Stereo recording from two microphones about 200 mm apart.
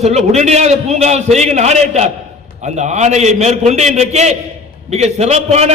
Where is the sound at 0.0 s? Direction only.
35° right (ahead or behind).